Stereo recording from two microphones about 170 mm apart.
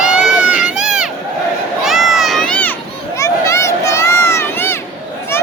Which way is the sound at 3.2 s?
15° left (ahead or behind).